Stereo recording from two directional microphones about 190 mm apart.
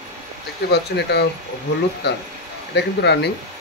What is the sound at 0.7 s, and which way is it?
Speech, 60° left (ahead or behind).